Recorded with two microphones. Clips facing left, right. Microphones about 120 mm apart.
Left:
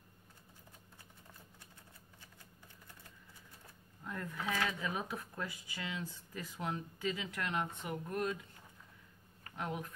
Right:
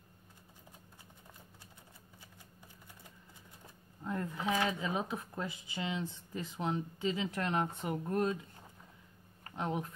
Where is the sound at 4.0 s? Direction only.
25° right (ahead or behind).